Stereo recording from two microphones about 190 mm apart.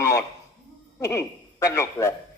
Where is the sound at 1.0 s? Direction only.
15° left (ahead or behind).